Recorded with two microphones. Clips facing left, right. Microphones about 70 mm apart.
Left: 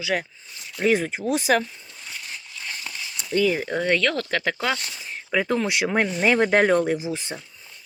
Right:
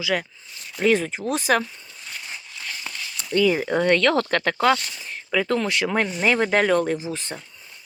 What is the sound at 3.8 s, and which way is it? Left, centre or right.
Speech, centre.